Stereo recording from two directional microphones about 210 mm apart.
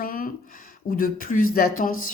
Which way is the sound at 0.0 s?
45° left (ahead or behind).